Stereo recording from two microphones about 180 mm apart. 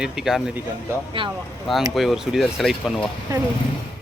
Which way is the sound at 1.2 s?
30° right (ahead or behind).